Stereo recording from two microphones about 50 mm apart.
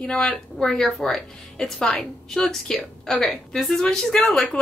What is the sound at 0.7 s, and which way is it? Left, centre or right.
A woman's voice, centre.